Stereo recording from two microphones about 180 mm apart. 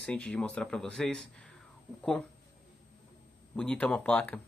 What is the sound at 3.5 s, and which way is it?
Speech, 5° left (ahead or behind).